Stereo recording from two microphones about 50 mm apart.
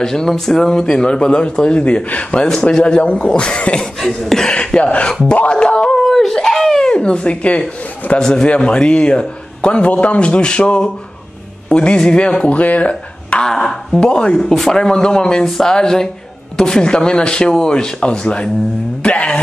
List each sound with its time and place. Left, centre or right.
0.0 s a man's voice: centre
4.0 s speech: centre
5.3 s wail: left
5.9 s a sound: centre
6.9 s a man's voice: centre
8.2 s a man's voice: centre; by 13.4 s left
13.4 s speech: centre
14.4 s a man's voice: centre; by 19.4 s left